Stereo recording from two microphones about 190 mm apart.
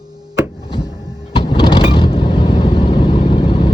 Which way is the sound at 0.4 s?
30° left (ahead or behind).